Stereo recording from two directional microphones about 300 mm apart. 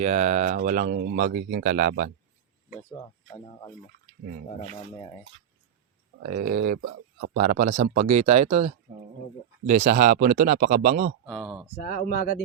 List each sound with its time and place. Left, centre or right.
0.0 s speech: right
2.9 s speech: centre
6.2 s speech: right
11.4 s speech: centre
11.8 s speech: left